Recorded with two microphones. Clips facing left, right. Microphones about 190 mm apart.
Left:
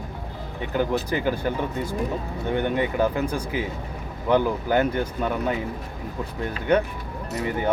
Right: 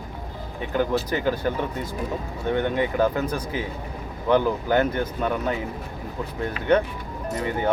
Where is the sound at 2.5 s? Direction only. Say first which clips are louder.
Even; 15° left (ahead or behind).